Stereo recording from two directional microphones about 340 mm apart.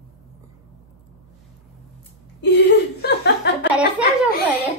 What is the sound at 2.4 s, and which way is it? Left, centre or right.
Chuckle, left.